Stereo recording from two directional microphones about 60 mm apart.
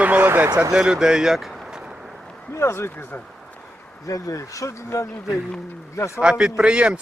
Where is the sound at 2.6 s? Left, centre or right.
Left.